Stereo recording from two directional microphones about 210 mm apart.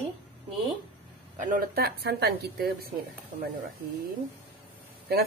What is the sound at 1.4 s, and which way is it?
A woman's voice, 40° right (ahead or behind).